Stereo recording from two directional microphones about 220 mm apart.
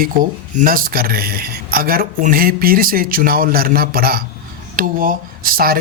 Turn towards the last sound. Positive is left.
turn(degrees=-40)  # may be behind; listen again after turning